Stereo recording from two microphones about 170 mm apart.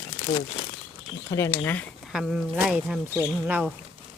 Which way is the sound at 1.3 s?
20° left (ahead or behind).